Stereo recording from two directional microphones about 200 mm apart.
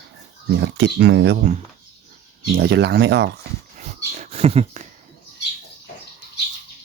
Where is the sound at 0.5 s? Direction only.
60° right (ahead or behind).